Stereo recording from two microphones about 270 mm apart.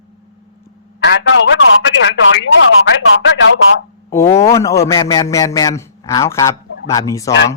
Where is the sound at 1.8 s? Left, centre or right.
Left.